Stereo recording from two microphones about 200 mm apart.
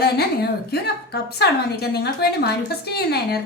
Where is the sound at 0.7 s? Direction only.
55° left (ahead or behind).